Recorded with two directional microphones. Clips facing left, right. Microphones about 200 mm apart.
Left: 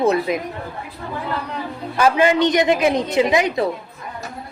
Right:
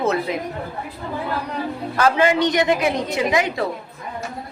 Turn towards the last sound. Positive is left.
turn(degrees=20)  # may be behind; listen again after turning